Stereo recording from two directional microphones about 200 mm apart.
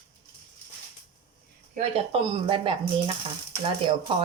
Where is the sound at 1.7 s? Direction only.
30° right (ahead or behind).